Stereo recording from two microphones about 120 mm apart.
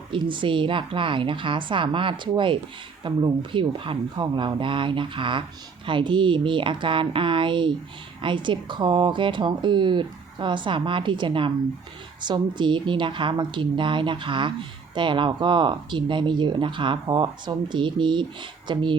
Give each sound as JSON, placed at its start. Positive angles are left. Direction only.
{"t": 0.1, "sound": "a woman's voice", "side_deg": -45}